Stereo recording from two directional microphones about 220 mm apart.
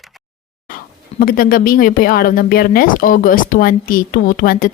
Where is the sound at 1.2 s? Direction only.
40° left (ahead or behind).